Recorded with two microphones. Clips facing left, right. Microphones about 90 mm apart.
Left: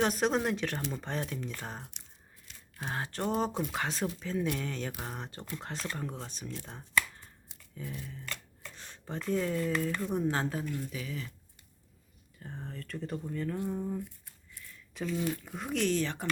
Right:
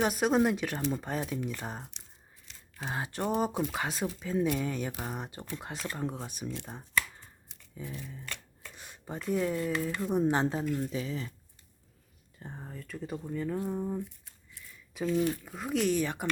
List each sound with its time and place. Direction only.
0.0 s speech: 5° right (ahead or behind)
7.8 s speech: 15° right (ahead or behind); by 11.3 s 30° right (ahead or behind)
12.4 s speech: 15° right (ahead or behind)
13.6 s speech: 20° right (ahead or behind)
14.9 s speech: 10° right (ahead or behind)